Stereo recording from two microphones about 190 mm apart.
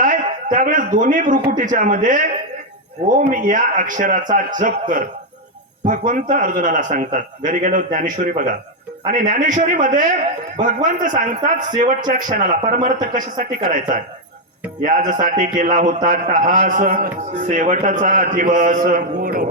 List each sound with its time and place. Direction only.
0.0 s a man's voice: 45° right (ahead or behind)